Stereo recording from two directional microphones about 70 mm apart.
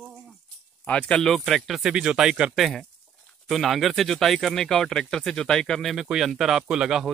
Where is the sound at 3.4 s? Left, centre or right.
Centre.